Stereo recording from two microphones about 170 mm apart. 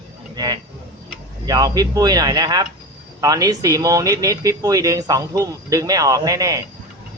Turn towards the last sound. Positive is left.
turn(degrees=-20)  # may be behind; listen again after turning